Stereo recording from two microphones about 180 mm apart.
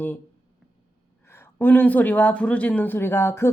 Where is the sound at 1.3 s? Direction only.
15° left (ahead or behind).